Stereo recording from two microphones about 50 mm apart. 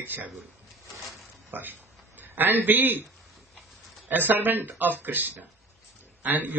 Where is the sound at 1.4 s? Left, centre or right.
Right.